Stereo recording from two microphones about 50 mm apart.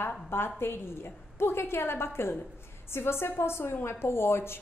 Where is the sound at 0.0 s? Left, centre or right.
Left.